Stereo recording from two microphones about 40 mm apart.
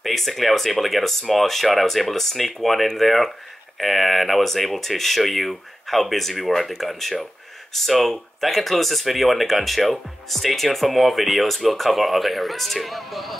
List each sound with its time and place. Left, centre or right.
0.0 s speech: centre